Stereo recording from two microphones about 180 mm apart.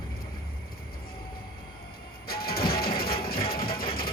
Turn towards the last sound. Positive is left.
turn(degrees=55)  # may be behind; listen again after turning